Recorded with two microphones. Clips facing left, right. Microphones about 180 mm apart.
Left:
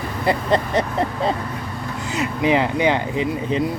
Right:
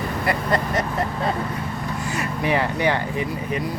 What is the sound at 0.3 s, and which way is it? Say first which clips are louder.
Speech: left 4 dB; 25° left (ahead or behind).